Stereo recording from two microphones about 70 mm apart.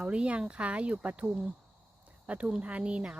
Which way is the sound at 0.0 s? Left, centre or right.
Centre.